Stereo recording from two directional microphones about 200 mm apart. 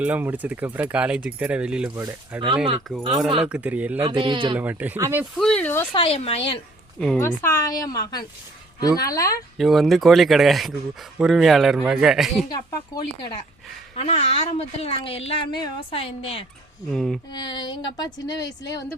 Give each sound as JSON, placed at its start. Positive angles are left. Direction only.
{"t": 0.0, "sound": "speech", "side_deg": -10}
{"t": 2.9, "sound": "speech", "side_deg": 0}
{"t": 4.0, "sound": "speech", "side_deg": -25}
{"t": 4.5, "sound": "speech", "side_deg": -10}
{"t": 5.4, "sound": "speech", "side_deg": 5}
{"t": 5.9, "sound": "speech", "side_deg": 30}
{"t": 7.2, "sound": "speech", "side_deg": 15}
{"t": 9.6, "sound": "speech", "side_deg": 0}
{"t": 12.5, "sound": "speech", "side_deg": 20}
{"t": 13.9, "sound": "speech", "side_deg": 30}
{"t": 16.8, "sound": "speech", "side_deg": 0}
{"t": 17.3, "sound": "speech", "side_deg": 20}